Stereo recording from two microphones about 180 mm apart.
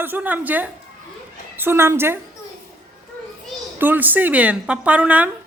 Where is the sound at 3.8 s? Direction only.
10° right (ahead or behind).